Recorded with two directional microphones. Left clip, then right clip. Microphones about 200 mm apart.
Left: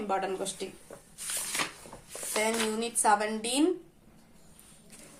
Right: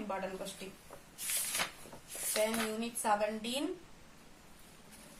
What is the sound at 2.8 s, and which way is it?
Speech, 30° left (ahead or behind).